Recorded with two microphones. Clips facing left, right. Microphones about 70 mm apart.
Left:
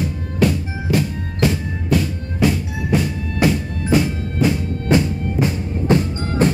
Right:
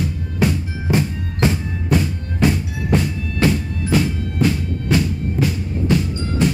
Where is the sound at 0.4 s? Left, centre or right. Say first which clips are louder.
Left 2 dB; centre.